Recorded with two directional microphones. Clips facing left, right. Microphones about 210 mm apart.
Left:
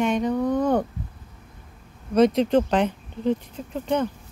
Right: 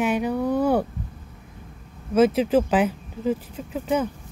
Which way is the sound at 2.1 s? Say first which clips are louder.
Even; 5° right (ahead or behind).